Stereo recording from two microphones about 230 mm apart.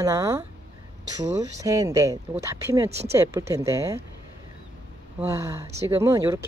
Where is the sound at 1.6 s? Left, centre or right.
Centre.